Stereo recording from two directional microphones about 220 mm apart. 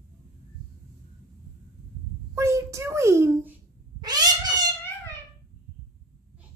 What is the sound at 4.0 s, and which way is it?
Cat, 20° right (ahead or behind).